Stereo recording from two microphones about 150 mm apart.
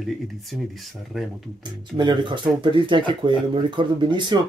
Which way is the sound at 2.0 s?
30° right (ahead or behind).